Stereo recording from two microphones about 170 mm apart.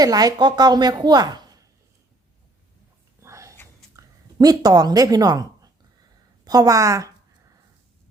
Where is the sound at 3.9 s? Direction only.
20° right (ahead or behind).